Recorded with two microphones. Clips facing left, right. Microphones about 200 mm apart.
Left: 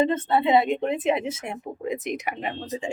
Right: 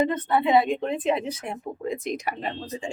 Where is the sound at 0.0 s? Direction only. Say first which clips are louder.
Left 1 dB; 25° left (ahead or behind).